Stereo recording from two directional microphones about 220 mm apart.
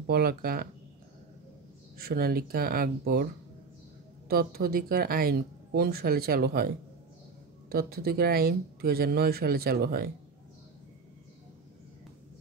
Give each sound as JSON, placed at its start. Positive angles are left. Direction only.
{"t": 0.0, "sound": "speech", "side_deg": -45}
{"t": 2.0, "sound": "speech", "side_deg": -45}
{"t": 4.3, "sound": "speech", "side_deg": -45}
{"t": 7.7, "sound": "speech", "side_deg": -45}